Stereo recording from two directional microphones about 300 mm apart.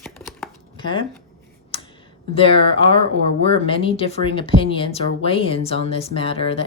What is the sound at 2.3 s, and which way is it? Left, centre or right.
A woman's voice, centre.